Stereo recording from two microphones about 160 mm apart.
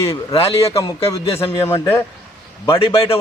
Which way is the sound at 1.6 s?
15° left (ahead or behind).